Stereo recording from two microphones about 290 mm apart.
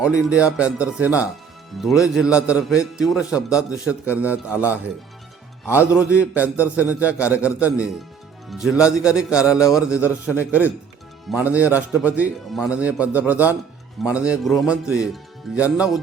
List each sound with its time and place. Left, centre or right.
0.0 s a man's voice: centre